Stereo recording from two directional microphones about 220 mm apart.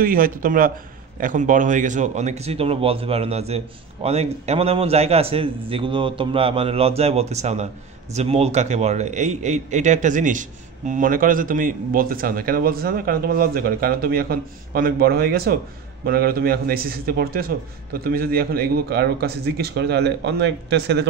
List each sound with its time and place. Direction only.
0.0 s a man's voice: 40° right (ahead or behind)